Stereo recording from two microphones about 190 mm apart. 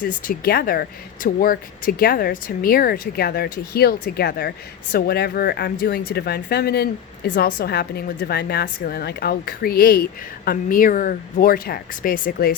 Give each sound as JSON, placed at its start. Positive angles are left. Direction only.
{"t": 0.0, "sound": "speech", "side_deg": 45}